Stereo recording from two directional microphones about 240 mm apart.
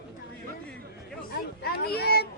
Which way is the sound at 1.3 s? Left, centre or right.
Left.